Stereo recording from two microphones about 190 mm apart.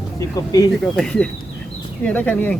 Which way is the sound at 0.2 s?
20° left (ahead or behind).